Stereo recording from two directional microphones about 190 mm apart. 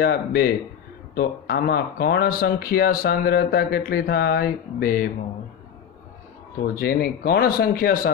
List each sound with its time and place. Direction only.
0.0 s speech: 55° left (ahead or behind)
6.7 s speech: 50° left (ahead or behind)